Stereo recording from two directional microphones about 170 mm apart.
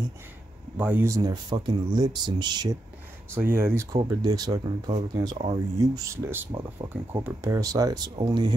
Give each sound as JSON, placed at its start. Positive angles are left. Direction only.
{"t": 0.7, "sound": "speech", "side_deg": -10}
{"t": 3.3, "sound": "speech", "side_deg": -15}
{"t": 5.9, "sound": "speech", "side_deg": -15}